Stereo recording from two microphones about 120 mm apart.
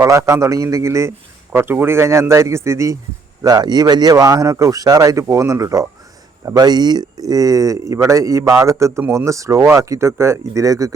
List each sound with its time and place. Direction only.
0.0 s speech: 25° right (ahead or behind)